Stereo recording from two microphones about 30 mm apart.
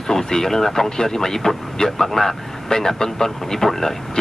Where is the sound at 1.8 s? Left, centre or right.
Left.